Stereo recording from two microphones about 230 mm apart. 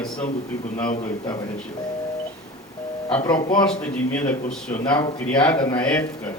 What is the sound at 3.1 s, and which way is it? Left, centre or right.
Speech, centre.